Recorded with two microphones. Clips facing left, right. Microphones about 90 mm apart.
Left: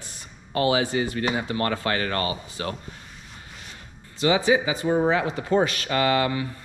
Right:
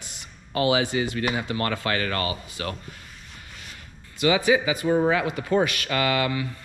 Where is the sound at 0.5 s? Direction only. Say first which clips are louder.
Even; 35° left (ahead or behind).